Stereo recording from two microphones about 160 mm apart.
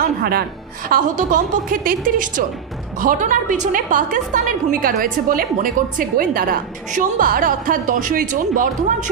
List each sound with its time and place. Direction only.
0.0 s a woman's voice: 75° right (ahead or behind); by 9.1 s 55° right (ahead or behind)